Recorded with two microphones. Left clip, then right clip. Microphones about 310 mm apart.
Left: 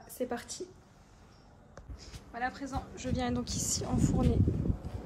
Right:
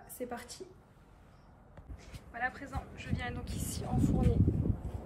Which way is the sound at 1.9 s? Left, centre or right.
Centre.